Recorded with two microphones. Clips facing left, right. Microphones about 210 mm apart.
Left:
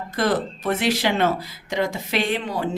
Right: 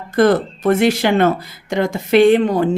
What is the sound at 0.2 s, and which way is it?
Speech, 50° right (ahead or behind).